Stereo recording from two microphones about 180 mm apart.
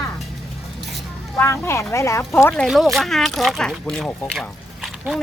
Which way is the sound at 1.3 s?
15° left (ahead or behind).